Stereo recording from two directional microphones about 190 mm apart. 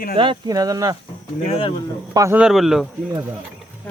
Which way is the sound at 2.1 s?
10° right (ahead or behind).